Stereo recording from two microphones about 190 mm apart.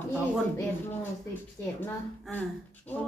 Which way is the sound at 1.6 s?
15° left (ahead or behind).